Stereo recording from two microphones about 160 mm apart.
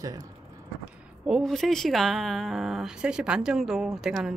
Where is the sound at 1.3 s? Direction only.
Centre (ahead or behind).